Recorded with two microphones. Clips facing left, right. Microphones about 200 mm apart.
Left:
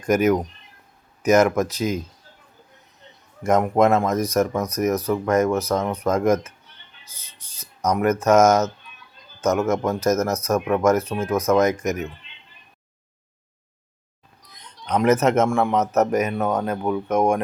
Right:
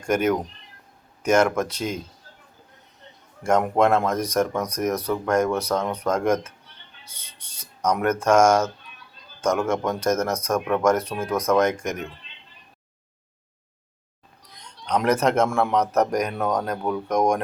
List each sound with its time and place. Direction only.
0.1 s speech: 5° left (ahead or behind)
3.4 s speech: 5° left (ahead or behind)
7.1 s a sound: 30° right (ahead or behind)
7.8 s speech: 5° left (ahead or behind)
14.6 s a man's voice: 5° left (ahead or behind)